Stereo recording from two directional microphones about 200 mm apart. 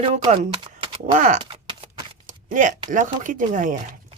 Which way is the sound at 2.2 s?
40° right (ahead or behind).